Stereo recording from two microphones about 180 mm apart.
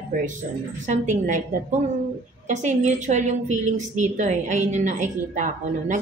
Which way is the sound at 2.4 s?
40° right (ahead or behind).